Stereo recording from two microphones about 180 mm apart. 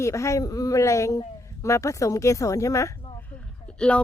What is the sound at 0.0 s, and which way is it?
Speech, 15° left (ahead or behind).